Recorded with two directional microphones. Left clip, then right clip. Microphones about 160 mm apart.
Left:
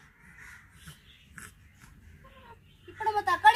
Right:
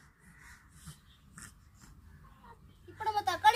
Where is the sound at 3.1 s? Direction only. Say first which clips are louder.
Left 5 dB; 25° right (ahead or behind).